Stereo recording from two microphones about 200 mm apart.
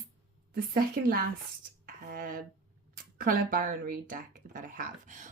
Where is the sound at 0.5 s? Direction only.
45° right (ahead or behind).